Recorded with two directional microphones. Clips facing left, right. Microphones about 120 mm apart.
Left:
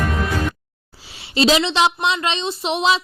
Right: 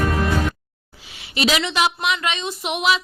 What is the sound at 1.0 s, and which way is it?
A woman's voice, 35° left (ahead or behind).